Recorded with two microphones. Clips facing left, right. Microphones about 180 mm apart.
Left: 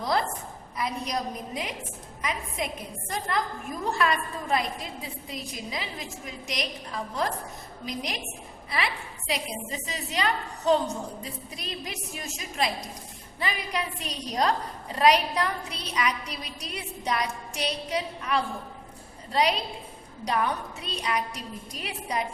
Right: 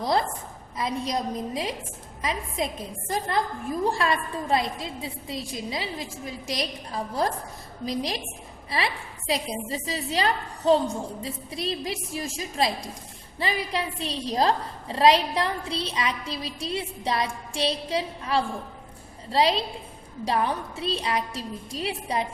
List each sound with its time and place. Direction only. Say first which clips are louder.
0.0 s a sound: right 2 dB; 25° right (ahead or behind)
0.8 s a woman's voice: right 3 dB; 25° right (ahead or behind)
3.1 s a woman's voice: right 3 dB; 30° right (ahead or behind)